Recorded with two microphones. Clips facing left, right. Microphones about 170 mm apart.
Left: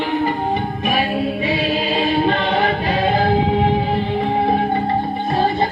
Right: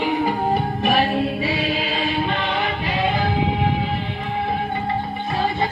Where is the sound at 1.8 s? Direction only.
40° left (ahead or behind).